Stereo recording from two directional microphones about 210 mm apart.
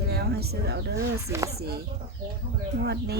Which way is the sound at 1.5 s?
50° right (ahead or behind).